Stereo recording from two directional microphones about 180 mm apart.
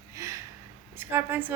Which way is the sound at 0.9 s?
10° right (ahead or behind).